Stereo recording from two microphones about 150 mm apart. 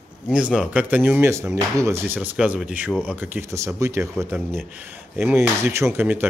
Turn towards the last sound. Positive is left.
turn(degrees=-10)  # may be behind; listen again after turning